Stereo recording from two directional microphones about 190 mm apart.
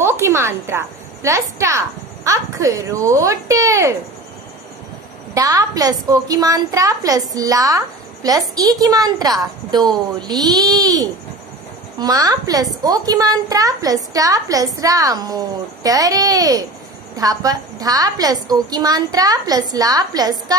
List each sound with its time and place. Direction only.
0.0 s a woman's voice: 15° right (ahead or behind)
5.3 s a woman's voice: 20° right (ahead or behind)